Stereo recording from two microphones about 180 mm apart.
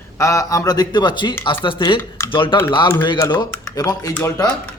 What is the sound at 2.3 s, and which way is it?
A man's voice, 30° left (ahead or behind).